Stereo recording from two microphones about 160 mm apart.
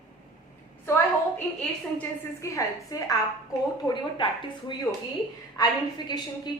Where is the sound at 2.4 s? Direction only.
20° left (ahead or behind).